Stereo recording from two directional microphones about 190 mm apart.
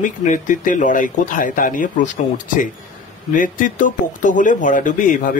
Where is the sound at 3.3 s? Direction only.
45° left (ahead or behind).